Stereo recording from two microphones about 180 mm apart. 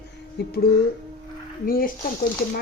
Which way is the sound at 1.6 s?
50° left (ahead or behind).